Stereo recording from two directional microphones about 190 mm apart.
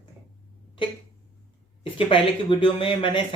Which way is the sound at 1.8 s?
25° left (ahead or behind).